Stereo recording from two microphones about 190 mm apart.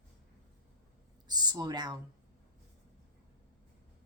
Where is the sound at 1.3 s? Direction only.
20° right (ahead or behind).